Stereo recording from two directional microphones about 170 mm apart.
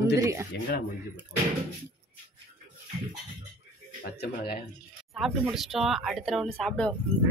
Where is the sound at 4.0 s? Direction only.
70° left (ahead or behind).